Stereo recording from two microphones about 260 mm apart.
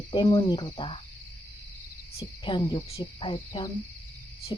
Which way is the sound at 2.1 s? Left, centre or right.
Centre.